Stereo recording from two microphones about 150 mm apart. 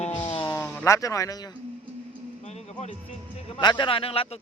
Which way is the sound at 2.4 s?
50° left (ahead or behind).